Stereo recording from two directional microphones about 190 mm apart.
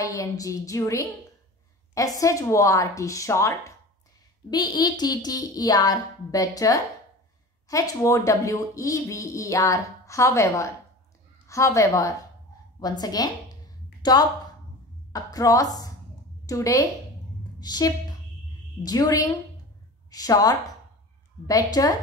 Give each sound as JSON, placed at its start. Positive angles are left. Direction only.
{"t": 0.1, "sound": "a woman's voice", "side_deg": 15}